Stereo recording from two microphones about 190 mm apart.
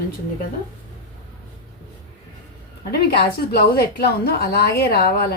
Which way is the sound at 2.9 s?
55° left (ahead or behind).